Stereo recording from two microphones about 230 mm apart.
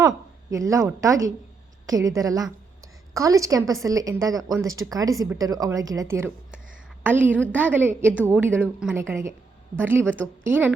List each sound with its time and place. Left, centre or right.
0.5 s a woman's voice: centre